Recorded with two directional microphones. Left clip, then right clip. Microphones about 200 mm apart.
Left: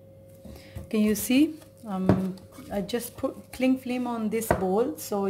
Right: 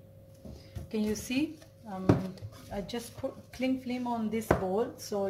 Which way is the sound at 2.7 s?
50° left (ahead or behind).